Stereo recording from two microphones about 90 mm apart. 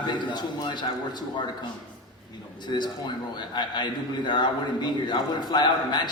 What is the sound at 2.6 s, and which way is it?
A man's voice, 55° left (ahead or behind).